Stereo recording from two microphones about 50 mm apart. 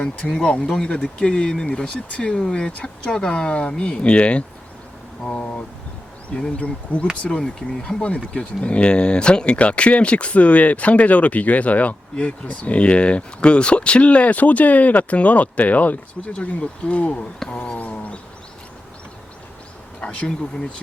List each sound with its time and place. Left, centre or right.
0.3 s speech: centre
17.5 s a sound: left
20.0 s speech: left